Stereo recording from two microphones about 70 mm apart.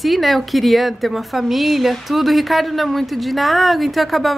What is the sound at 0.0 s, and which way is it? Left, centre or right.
A woman's voice, centre.